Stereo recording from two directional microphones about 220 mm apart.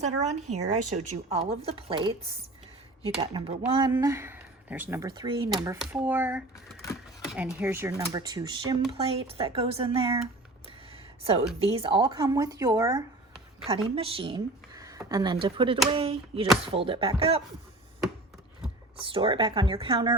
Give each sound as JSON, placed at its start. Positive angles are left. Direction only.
{"t": 0.2, "sound": "a woman's voice", "side_deg": -30}
{"t": 10.7, "sound": "a sound", "side_deg": -25}
{"t": 11.6, "sound": "a woman's voice", "side_deg": -25}
{"t": 13.7, "sound": "speech", "side_deg": -25}
{"t": 18.9, "sound": "speech", "side_deg": -25}